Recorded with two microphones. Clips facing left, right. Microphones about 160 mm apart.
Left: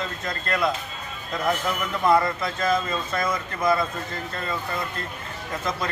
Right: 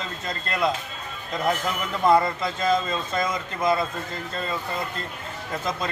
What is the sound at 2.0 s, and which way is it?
Music, 25° right (ahead or behind).